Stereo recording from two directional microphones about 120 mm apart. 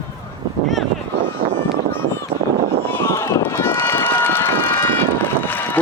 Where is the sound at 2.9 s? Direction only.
20° left (ahead or behind).